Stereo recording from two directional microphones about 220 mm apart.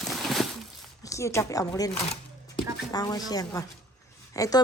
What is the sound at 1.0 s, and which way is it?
A woman's voice, 15° left (ahead or behind).